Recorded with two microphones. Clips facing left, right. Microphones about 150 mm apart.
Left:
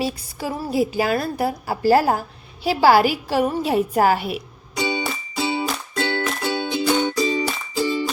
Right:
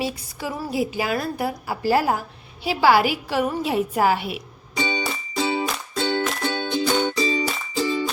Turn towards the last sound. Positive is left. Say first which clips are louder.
# left 1 dB
turn(degrees=5)  # may be behind; listen again after turning